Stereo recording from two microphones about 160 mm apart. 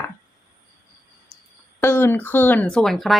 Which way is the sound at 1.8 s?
15° left (ahead or behind).